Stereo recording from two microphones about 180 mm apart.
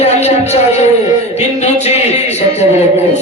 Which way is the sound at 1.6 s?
40° left (ahead or behind).